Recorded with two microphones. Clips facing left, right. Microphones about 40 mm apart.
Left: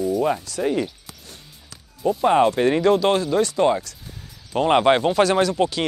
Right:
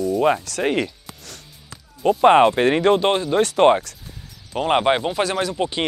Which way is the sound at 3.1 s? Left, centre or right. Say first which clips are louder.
Even; right.